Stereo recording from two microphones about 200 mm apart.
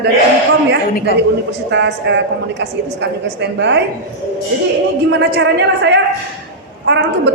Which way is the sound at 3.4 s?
60° right (ahead or behind).